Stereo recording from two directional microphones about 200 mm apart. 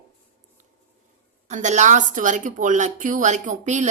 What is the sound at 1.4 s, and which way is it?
A woman's voice, 35° right (ahead or behind).